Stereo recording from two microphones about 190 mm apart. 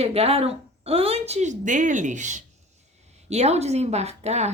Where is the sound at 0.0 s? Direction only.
30° right (ahead or behind).